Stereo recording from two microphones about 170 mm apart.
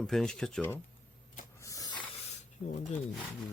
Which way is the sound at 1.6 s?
20° left (ahead or behind).